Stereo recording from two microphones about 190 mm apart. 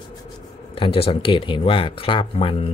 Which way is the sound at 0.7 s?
30° left (ahead or behind).